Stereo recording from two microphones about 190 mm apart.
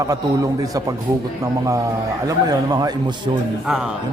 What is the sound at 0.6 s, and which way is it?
Speech, 20° right (ahead or behind).